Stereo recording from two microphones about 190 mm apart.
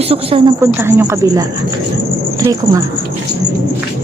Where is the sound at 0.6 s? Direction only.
15° right (ahead or behind).